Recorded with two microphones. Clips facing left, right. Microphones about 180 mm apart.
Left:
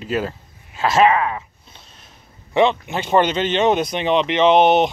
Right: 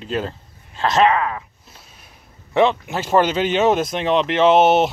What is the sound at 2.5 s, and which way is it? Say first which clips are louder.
Speech: even; centre (ahead or behind).